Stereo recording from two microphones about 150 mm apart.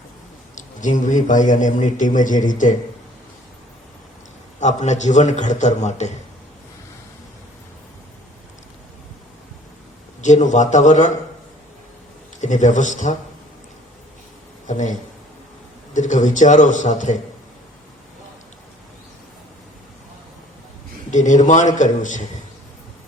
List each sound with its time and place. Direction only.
0.5 s a man's voice: 55° left (ahead or behind)
4.6 s a man's voice: 50° left (ahead or behind)
10.2 s a man's voice: 55° left (ahead or behind)
12.4 s a man's voice: 55° left (ahead or behind)
14.7 s a man's voice: 55° left (ahead or behind)
21.1 s a man's voice: 55° left (ahead or behind)